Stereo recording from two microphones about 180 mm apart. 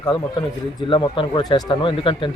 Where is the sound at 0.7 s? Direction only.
25° left (ahead or behind).